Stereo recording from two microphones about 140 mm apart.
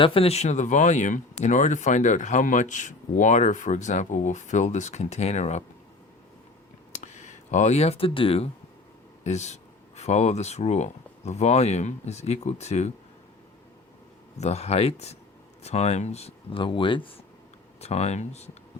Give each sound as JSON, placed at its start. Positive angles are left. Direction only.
{"t": 0.0, "sound": "speech", "side_deg": 40}
{"t": 6.9, "sound": "speech", "side_deg": 60}
{"t": 9.2, "sound": "speech", "side_deg": 55}
{"t": 14.3, "sound": "speech", "side_deg": 50}
{"t": 17.7, "sound": "speech", "side_deg": 50}